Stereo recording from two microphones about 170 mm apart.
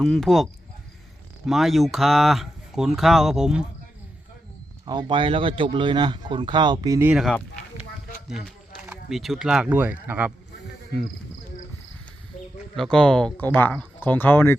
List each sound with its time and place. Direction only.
0.0 s speech: centre (ahead or behind)
4.9 s speech: 25° right (ahead or behind)
7.1 s speech: centre (ahead or behind)
8.9 s speech: centre (ahead or behind)
12.7 s speech: centre (ahead or behind)